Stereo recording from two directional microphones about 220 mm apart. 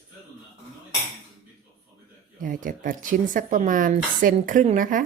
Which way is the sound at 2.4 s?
40° right (ahead or behind).